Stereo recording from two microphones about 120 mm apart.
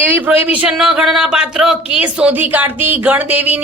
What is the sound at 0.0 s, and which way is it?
A man's voice, 15° right (ahead or behind).